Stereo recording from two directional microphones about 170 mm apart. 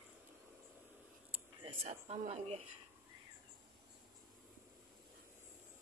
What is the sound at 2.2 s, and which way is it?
Speech, 40° right (ahead or behind).